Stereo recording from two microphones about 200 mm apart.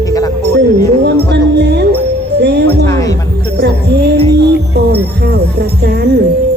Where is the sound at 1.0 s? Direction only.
55° right (ahead or behind).